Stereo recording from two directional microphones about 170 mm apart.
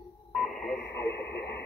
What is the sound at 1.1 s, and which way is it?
Radio, 80° left.